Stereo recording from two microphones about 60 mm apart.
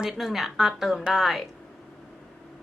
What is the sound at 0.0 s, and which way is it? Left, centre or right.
A woman's voice, centre.